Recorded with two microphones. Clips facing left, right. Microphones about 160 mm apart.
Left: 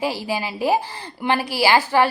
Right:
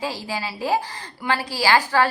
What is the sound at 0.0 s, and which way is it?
A woman's voice, 15° left (ahead or behind).